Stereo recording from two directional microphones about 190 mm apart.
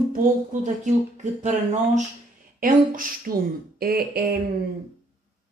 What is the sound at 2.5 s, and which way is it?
Speech, 45° right (ahead or behind).